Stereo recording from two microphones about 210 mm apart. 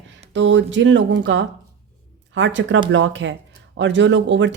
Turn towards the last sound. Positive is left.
turn(degrees=-60)  # may be behind; listen again after turning